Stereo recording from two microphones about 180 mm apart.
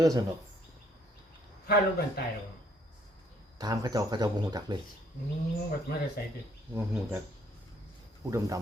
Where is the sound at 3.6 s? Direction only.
20° right (ahead or behind).